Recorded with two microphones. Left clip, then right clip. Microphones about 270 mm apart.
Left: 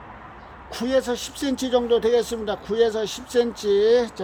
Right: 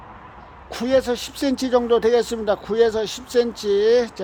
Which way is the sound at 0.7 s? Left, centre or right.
Centre.